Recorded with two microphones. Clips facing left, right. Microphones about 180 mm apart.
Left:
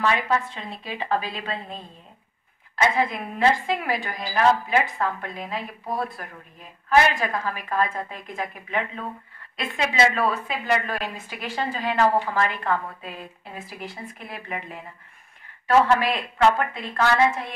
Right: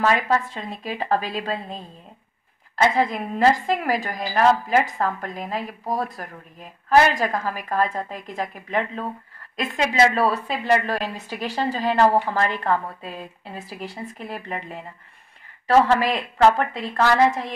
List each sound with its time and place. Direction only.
0.0 s a woman's voice: 45° right (ahead or behind)